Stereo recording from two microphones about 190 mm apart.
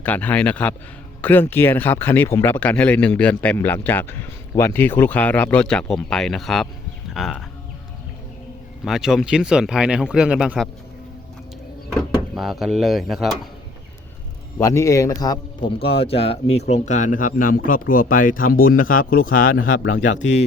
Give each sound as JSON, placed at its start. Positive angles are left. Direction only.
{"t": 0.0, "sound": "speech", "side_deg": 10}
{"t": 8.8, "sound": "speech", "side_deg": 0}
{"t": 12.3, "sound": "speech", "side_deg": 0}
{"t": 14.6, "sound": "speech", "side_deg": 15}
{"t": 15.8, "sound": "speech", "side_deg": 30}